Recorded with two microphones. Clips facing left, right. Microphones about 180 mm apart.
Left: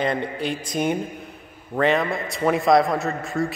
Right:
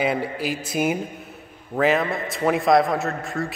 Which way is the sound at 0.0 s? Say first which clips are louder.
Right 1 dB; 5° right (ahead or behind).